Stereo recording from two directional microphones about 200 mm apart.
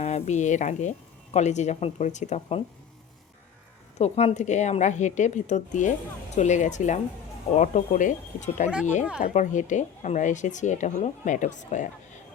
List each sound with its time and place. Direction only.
0.0 s speech: 35° left (ahead or behind)
3.9 s speech: 35° left (ahead or behind)